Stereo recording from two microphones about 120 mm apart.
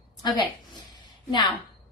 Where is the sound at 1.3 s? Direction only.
40° left (ahead or behind).